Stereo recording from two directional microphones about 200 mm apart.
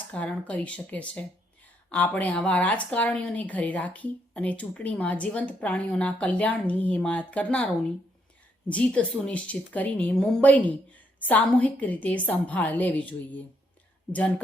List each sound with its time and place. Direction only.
0.1 s speech: 5° left (ahead or behind)